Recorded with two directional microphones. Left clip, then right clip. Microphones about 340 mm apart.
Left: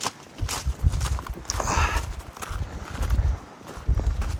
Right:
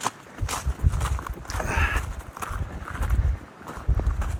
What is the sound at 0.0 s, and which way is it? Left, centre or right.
Walk, centre.